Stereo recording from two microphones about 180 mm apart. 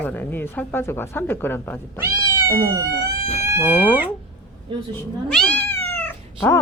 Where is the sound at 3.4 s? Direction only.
15° right (ahead or behind).